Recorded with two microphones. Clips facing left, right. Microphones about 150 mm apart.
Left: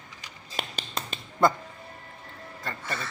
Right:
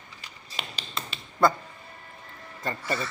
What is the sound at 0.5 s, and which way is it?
Finger snapping, 45° left (ahead or behind).